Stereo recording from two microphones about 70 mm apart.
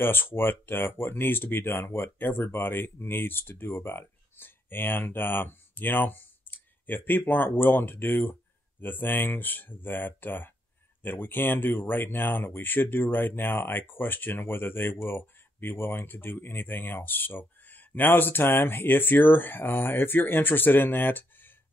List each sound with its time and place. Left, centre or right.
0.0 s speech: left